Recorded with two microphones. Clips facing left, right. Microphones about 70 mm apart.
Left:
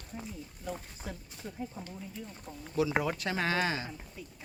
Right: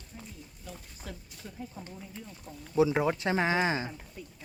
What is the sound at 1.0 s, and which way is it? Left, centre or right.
Speech, centre.